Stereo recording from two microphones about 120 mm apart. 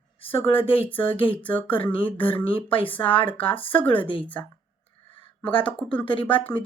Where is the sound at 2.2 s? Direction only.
50° left (ahead or behind).